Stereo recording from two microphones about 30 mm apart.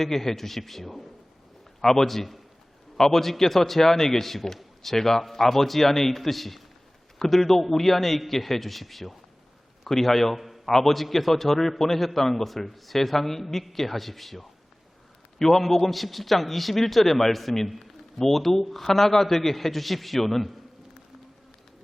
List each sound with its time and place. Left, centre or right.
0.0 s a man's voice: centre
1.8 s a man's voice: centre
10.3 s a man's voice: centre